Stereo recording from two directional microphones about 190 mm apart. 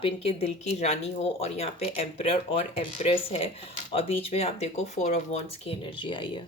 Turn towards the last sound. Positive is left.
turn(degrees=25)  # may be behind; listen again after turning